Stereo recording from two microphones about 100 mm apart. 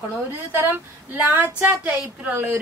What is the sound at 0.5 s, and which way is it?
A woman's voice, 20° right (ahead or behind).